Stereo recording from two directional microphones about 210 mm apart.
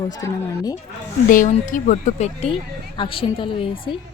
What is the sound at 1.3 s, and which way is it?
A woman's voice, 40° left (ahead or behind).